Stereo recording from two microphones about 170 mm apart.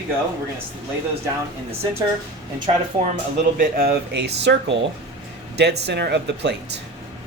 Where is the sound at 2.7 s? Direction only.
30° right (ahead or behind).